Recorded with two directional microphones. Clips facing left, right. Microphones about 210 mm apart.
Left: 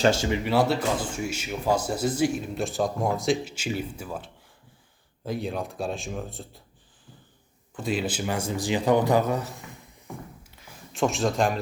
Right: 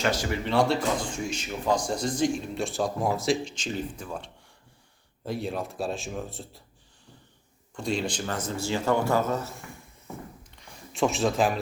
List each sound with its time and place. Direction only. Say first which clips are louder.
0.0 s speech: left 5 dB; 25° left (ahead or behind)
0.4 s speech: even; 5° left (ahead or behind)
7.8 s speech: left 1 dB; 5° left (ahead or behind)
10.5 s a sound: even; 5° left (ahead or behind)